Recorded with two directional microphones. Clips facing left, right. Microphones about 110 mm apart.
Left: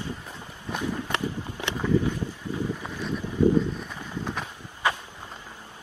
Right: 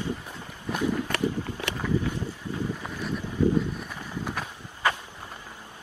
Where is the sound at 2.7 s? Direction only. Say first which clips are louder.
Left 1 dB; 5° left (ahead or behind).